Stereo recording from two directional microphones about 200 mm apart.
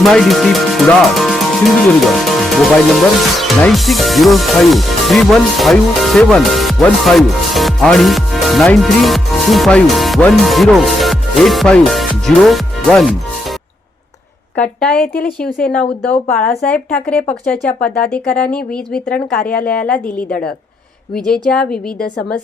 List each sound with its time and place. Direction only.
0.0 s speech: centre (ahead or behind)
14.5 s a woman's voice: 5° left (ahead or behind)
19.5 s a woman's voice: 45° left (ahead or behind)
19.7 s a woman's voice: 5° left (ahead or behind)